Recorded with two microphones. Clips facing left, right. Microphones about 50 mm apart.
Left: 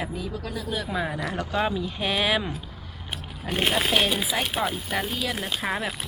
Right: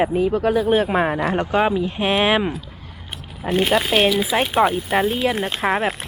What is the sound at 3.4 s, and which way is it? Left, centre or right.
Speech, right.